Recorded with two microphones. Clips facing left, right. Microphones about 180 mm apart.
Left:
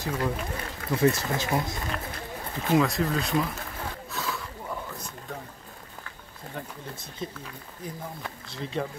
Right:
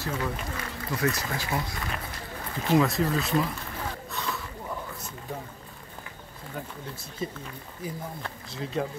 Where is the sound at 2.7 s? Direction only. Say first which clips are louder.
Even; centre (ahead or behind).